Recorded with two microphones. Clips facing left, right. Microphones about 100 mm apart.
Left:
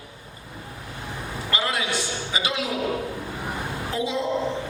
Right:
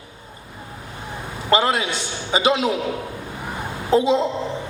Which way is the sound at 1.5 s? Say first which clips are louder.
Right 8 dB; 30° right (ahead or behind).